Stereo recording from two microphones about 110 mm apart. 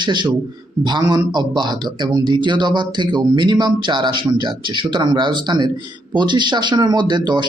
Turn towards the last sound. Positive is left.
turn(degrees=-45)  # may be behind; listen again after turning